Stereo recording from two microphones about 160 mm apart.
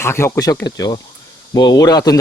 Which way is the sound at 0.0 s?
15° left (ahead or behind).